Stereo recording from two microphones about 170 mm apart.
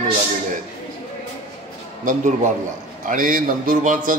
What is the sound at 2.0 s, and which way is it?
A man's voice, 45° right (ahead or behind).